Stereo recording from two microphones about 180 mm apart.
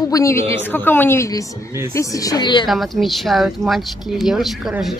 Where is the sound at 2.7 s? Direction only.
Centre (ahead or behind).